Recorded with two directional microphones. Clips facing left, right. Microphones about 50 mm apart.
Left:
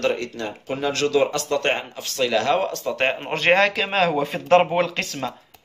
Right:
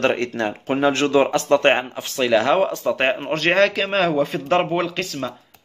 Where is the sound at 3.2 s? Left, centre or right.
Centre.